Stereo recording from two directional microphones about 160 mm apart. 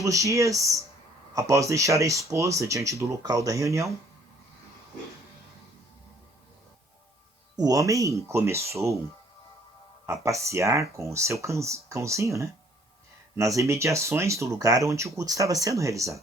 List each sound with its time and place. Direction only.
0.0 s speech: 20° right (ahead or behind)
7.5 s speech: 25° right (ahead or behind)
10.1 s speech: 20° right (ahead or behind)